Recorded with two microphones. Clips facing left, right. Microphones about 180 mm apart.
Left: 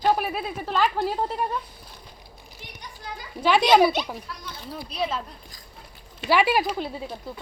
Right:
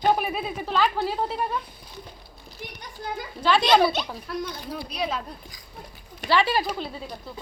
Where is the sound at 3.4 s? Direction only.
10° left (ahead or behind).